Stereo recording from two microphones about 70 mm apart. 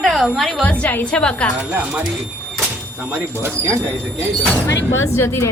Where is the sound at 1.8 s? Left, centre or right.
Right.